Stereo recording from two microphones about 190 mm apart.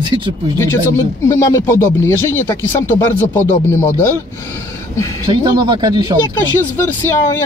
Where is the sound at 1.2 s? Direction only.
15° left (ahead or behind).